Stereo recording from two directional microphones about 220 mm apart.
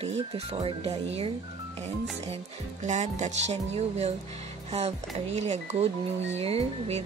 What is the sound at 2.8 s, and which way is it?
Speech, 35° right (ahead or behind).